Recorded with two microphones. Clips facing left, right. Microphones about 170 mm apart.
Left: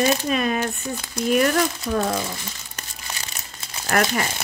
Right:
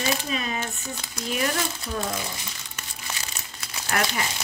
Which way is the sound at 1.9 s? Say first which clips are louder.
Left 6 dB; 70° left (ahead or behind).